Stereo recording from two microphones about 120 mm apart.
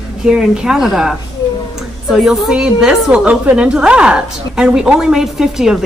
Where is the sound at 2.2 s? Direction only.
5° right (ahead or behind).